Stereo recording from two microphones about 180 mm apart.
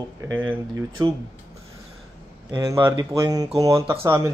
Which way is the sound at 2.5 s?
20° right (ahead or behind).